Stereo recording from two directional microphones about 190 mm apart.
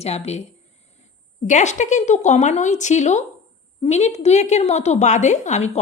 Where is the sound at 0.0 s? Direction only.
35° left (ahead or behind).